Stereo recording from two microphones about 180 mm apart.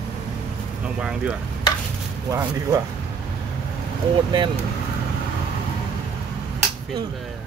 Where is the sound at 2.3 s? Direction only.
20° right (ahead or behind).